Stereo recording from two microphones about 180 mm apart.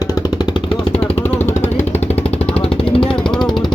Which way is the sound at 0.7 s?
35° left (ahead or behind).